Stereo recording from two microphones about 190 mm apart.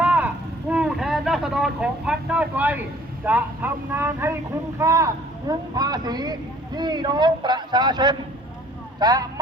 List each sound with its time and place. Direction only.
0.0 s a sound: 10° right (ahead or behind)
0.7 s vehicle: 5° right (ahead or behind)
3.2 s speech: 10° right (ahead or behind)